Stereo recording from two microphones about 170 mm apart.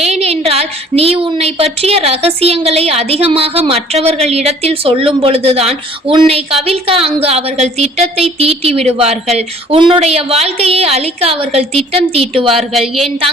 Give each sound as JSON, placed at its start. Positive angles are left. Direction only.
{"t": 0.1, "sound": "a woman's voice", "side_deg": -35}
{"t": 12.5, "sound": "speech", "side_deg": 0}